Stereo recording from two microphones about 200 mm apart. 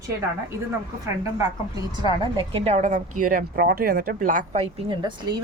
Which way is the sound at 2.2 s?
25° right (ahead or behind).